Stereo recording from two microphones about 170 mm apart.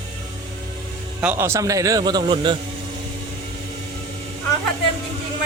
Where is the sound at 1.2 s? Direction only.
10° right (ahead or behind); by 2.6 s 30° right (ahead or behind).